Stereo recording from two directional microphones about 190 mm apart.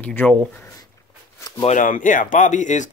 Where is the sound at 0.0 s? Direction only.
10° left (ahead or behind).